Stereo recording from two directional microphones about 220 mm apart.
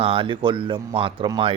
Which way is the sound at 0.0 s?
25° right (ahead or behind).